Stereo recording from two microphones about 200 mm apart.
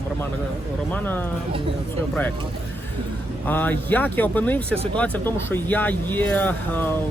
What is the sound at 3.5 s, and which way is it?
Speech, 10° left (ahead or behind).